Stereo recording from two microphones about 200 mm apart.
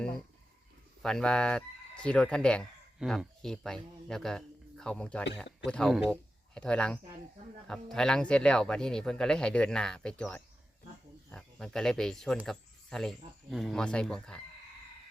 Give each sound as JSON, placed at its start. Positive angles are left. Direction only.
{"t": 1.0, "sound": "speech", "side_deg": 5}